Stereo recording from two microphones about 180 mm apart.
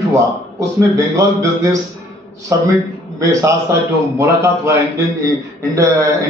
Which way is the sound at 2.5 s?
15° right (ahead or behind).